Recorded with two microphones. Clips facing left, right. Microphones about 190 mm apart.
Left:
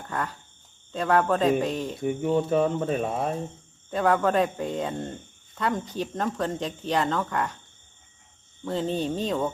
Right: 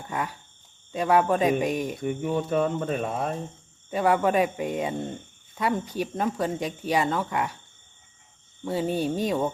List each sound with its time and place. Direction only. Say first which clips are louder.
0.0 s cricket: even; 10° right (ahead or behind)
0.9 s speech: right 1 dB; 10° right (ahead or behind)
2.4 s speech: left 2 dB; centre (ahead or behind)
3.9 s speech: even; 10° right (ahead or behind)
8.6 s speech: right 1 dB; 10° right (ahead or behind)